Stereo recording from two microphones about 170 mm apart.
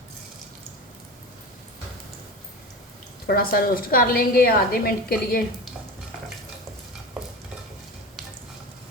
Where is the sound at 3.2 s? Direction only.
60° left (ahead or behind).